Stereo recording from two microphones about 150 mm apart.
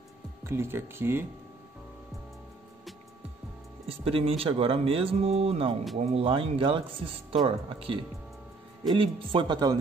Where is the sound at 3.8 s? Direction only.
40° right (ahead or behind).